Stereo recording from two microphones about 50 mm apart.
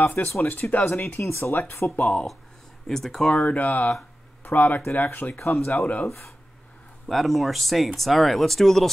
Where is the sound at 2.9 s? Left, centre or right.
Centre.